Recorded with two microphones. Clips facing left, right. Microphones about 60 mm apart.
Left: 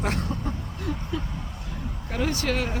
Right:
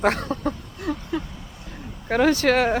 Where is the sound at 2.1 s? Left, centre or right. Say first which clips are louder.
Right 9 dB; right.